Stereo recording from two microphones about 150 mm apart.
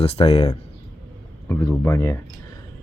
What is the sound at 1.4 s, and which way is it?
Speech, 20° left (ahead or behind).